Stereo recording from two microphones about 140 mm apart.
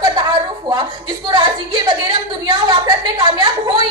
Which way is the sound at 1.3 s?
30° right (ahead or behind).